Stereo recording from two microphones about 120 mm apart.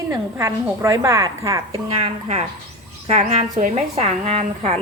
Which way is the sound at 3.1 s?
70° right (ahead or behind).